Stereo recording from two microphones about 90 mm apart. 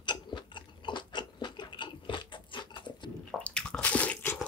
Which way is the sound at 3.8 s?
15° left (ahead or behind).